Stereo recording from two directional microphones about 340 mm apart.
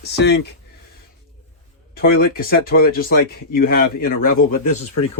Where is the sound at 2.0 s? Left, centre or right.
Left.